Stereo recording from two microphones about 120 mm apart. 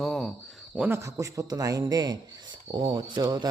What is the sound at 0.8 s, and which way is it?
Speech, 20° right (ahead or behind).